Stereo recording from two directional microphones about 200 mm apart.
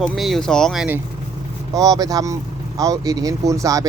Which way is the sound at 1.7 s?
20° right (ahead or behind).